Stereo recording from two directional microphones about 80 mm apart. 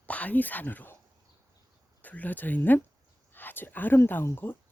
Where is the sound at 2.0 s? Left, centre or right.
Centre.